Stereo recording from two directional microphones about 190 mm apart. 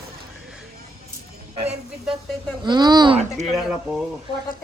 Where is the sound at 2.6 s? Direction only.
20° right (ahead or behind).